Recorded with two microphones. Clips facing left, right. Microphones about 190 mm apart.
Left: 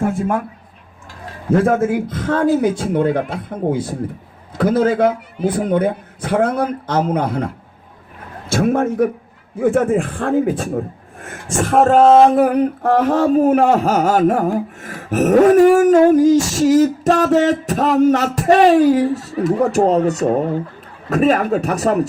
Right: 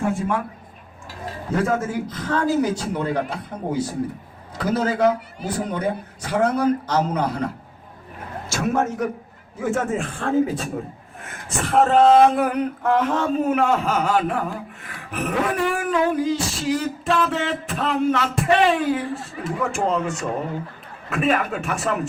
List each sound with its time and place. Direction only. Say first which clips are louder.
0.0 s a man's voice: left 4 dB; 50° left (ahead or behind)
1.6 s a man's voice: left 7 dB; 55° left (ahead or behind); by 22.0 s 40° left (ahead or behind)